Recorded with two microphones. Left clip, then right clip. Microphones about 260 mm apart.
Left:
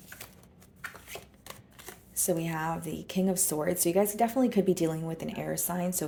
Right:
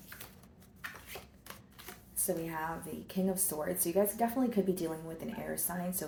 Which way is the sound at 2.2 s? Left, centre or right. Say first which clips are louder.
Left 5 dB; left.